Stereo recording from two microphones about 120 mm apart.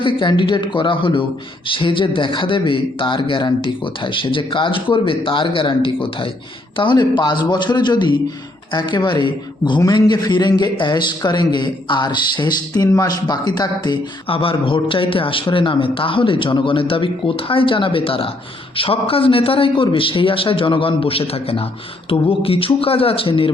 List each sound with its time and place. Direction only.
0.0 s a man's voice: 45° left (ahead or behind)
14.3 s speech: 50° left (ahead or behind)